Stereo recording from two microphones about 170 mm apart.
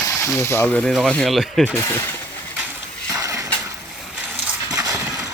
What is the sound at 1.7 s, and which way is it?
Speech, 15° left (ahead or behind).